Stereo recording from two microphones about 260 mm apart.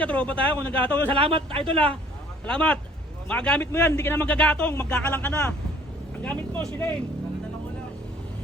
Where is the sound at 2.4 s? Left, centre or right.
Centre.